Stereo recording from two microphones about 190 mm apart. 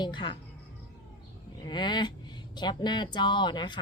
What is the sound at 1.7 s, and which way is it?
Speech, 25° left (ahead or behind).